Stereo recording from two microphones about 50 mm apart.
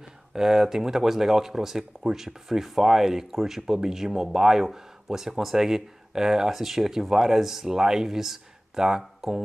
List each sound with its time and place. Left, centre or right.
0.3 s speech: centre